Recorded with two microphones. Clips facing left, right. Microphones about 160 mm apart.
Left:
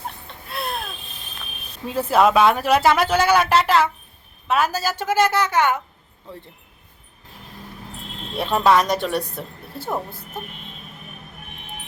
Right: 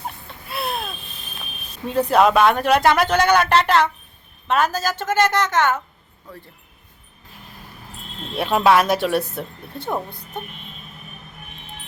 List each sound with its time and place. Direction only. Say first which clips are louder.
0.3 s a sound: right 2 dB; 5° right (ahead or behind)
1.9 s a woman's voice: right 1 dB; 5° left (ahead or behind)
6.3 s speech: left 2 dB; 25° left (ahead or behind)
8.4 s speech: right 1 dB; 5° right (ahead or behind)